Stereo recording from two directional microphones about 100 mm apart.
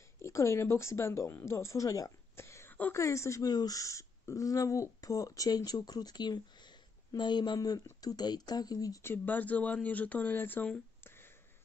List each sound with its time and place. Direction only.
0.2 s speech: 30° left (ahead or behind)
3.4 s speech: 40° left (ahead or behind)
9.0 s speech: 20° left (ahead or behind)